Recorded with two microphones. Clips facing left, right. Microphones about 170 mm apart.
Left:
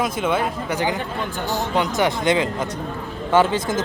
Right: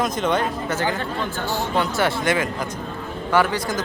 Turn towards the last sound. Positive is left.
turn(degrees=20)  # may be behind; listen again after turning